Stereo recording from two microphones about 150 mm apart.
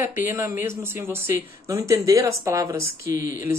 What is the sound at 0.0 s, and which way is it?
Speech, 15° right (ahead or behind).